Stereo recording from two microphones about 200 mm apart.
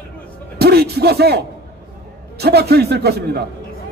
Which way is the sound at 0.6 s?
55° right (ahead or behind).